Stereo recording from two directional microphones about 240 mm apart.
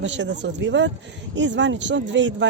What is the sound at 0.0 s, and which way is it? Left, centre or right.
Speech, right.